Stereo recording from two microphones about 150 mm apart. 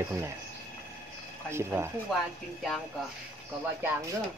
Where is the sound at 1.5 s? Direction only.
15° right (ahead or behind).